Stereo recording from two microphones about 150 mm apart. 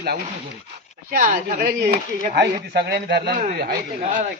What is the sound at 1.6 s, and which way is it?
A man's voice, 85° right.